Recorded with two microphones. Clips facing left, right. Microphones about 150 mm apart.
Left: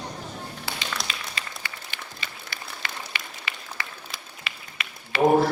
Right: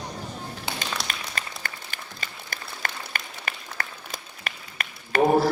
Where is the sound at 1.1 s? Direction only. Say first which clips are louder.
Right 1 dB; 45° right (ahead or behind).